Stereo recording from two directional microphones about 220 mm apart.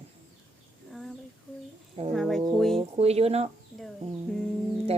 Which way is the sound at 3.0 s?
30° right (ahead or behind).